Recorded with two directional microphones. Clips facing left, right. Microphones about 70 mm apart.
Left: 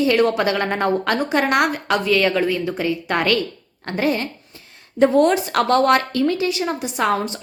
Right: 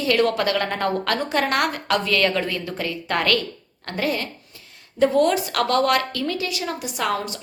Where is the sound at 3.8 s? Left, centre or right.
Left.